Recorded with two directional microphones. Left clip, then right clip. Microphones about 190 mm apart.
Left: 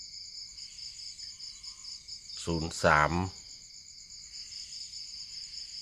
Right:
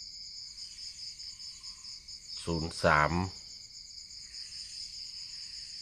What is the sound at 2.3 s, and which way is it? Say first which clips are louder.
Cricket: left 1 dB; 15° left (ahead or behind).